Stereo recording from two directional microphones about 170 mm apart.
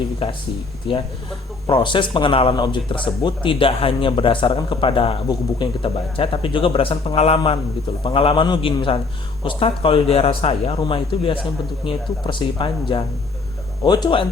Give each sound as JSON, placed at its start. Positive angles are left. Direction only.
{"t": 0.2, "sound": "speech", "side_deg": 30}